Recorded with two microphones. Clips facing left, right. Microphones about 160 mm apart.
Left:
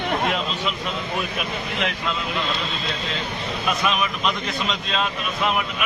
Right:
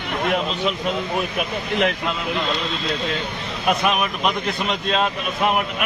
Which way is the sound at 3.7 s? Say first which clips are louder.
Right 4 dB; 60° right (ahead or behind).